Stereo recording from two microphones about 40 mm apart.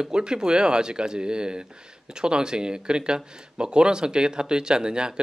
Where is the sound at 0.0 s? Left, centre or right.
Centre.